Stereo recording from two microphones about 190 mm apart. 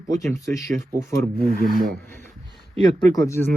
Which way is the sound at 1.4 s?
50° left (ahead or behind).